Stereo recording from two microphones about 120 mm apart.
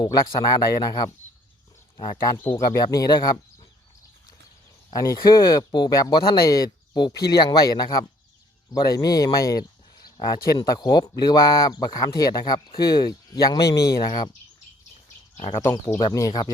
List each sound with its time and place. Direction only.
0.0 s speech: 35° left (ahead or behind)
2.4 s speech: 20° left (ahead or behind)
2.6 s speech: 30° left (ahead or behind)
4.9 s speech: 35° left (ahead or behind)
15.5 s speech: 25° left (ahead or behind)